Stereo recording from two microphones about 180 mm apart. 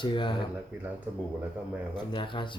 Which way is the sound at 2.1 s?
25° left (ahead or behind).